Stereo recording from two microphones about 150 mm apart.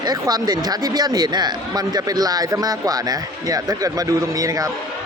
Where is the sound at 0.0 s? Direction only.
25° right (ahead or behind).